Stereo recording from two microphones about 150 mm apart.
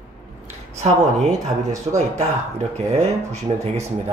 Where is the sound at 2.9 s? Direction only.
45° right (ahead or behind).